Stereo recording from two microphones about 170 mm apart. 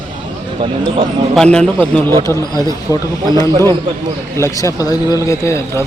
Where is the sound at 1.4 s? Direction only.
5° left (ahead or behind).